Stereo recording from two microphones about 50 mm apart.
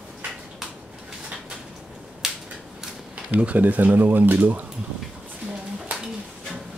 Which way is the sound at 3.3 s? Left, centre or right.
Right.